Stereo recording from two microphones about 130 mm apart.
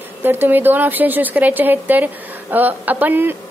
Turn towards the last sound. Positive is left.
turn(degrees=-15)  # may be behind; listen again after turning